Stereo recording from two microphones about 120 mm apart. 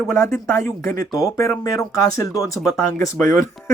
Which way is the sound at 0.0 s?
20° left (ahead or behind).